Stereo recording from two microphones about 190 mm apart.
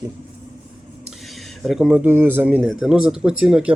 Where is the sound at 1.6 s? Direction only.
5° right (ahead or behind).